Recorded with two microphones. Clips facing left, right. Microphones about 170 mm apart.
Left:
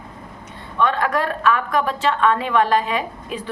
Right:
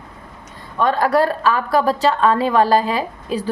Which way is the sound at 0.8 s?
40° right (ahead or behind).